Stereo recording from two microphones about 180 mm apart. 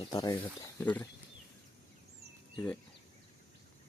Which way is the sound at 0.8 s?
10° left (ahead or behind).